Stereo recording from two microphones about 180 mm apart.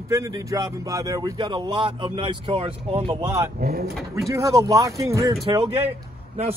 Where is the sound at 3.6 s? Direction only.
55° right (ahead or behind).